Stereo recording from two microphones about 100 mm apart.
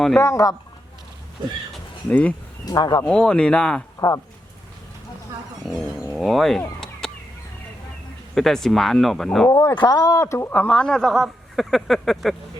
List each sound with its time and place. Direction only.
0.2 s speech: 30° left (ahead or behind)
2.0 s speech: 15° left (ahead or behind)
2.6 s speech: 45° left (ahead or behind)
3.1 s speech: 10° left (ahead or behind)
5.6 s speech: centre (ahead or behind)
6.7 s a sound: 5° left (ahead or behind)
8.4 s speech: 5° left (ahead or behind)
9.5 s speech: 45° left (ahead or behind)
10.1 s speech: 30° left (ahead or behind); by 12.4 s centre (ahead or behind)